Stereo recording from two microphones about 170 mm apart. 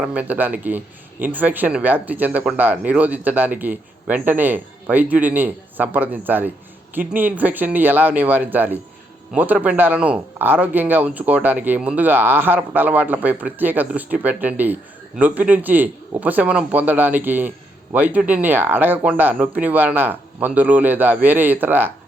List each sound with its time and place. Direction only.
0.0 s speech: 10° right (ahead or behind)